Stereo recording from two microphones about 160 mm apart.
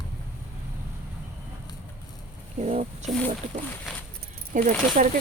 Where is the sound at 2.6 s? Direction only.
45° right (ahead or behind).